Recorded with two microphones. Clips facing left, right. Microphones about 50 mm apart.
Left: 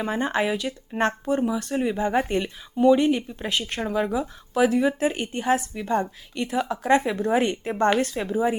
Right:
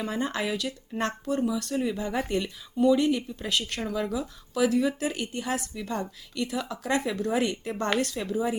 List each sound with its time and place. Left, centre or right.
0.0 s speech: left